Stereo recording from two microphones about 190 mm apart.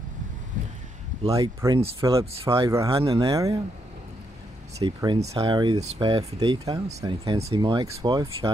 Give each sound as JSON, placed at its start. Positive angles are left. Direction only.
{"t": 1.3, "sound": "speech", "side_deg": -20}
{"t": 4.7, "sound": "speech", "side_deg": -25}